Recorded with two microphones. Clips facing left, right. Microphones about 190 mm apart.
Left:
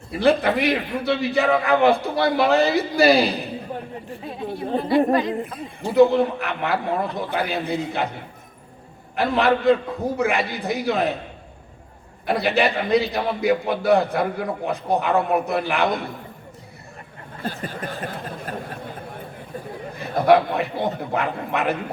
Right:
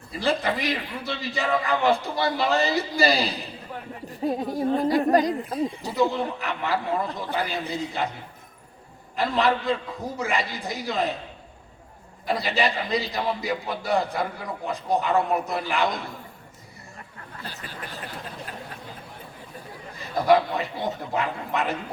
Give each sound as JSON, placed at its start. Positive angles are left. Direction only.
{"t": 0.1, "sound": "a man's voice", "side_deg": 60}
{"t": 4.1, "sound": "speech", "side_deg": -40}
{"t": 5.5, "sound": "a man's voice", "side_deg": 60}
{"t": 9.1, "sound": "a man's voice", "side_deg": 60}
{"t": 12.2, "sound": "a man's voice", "side_deg": 60}
{"t": 17.4, "sound": "a sound", "side_deg": 50}
{"t": 20.0, "sound": "a man's voice", "side_deg": 60}